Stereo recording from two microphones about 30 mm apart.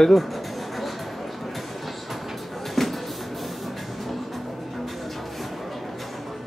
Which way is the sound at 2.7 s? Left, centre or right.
Centre.